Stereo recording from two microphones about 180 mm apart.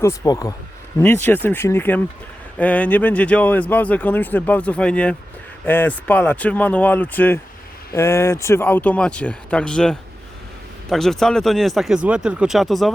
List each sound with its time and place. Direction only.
0.0 s a man's voice: 15° left (ahead or behind); by 12.9 s centre (ahead or behind)